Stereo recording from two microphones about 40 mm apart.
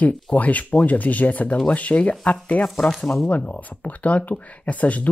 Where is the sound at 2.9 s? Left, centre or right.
Centre.